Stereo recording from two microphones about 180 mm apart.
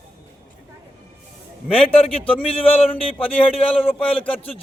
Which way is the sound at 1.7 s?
30° left (ahead or behind).